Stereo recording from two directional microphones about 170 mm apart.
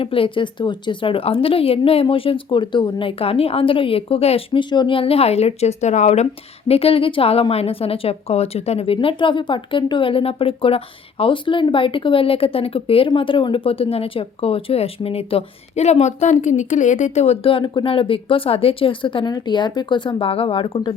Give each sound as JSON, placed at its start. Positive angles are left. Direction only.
{"t": 0.0, "sound": "a woman's voice", "side_deg": 30}